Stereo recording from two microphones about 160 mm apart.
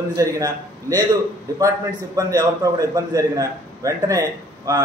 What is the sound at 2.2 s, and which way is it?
A man's voice, 20° right (ahead or behind).